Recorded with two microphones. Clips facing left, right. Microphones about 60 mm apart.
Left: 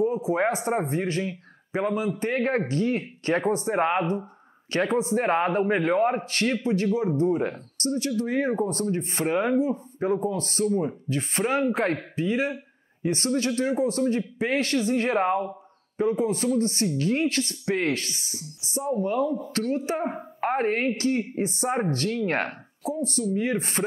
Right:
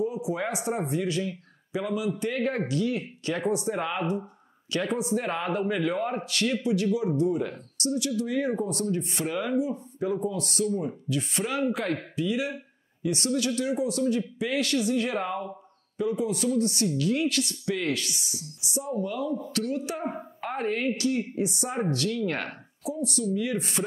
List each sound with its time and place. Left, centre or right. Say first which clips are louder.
0.0 s speech: left 5 dB; left